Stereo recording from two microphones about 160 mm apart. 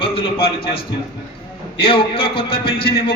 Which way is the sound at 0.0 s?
35° left (ahead or behind).